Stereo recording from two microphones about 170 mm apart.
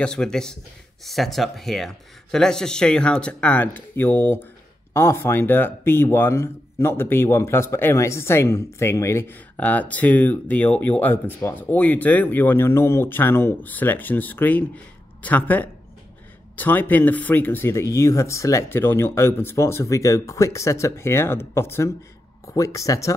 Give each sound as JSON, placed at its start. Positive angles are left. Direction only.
{"t": 0.0, "sound": "speech", "side_deg": 5}